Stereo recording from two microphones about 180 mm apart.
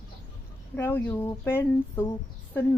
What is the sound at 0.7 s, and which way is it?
A woman's voice, 10° left (ahead or behind).